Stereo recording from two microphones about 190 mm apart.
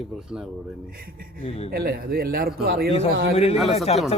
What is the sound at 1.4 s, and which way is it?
Speech, 35° left (ahead or behind).